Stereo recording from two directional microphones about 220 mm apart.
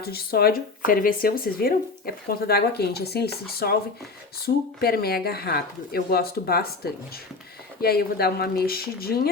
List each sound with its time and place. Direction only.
0.0 s speech: 45° left (ahead or behind)
4.4 s speech: 45° left (ahead or behind)